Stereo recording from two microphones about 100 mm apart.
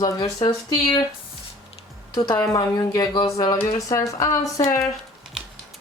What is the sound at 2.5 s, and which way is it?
Speech, 45° left (ahead or behind).